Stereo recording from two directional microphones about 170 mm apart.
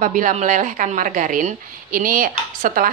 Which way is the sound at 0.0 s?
50° right (ahead or behind).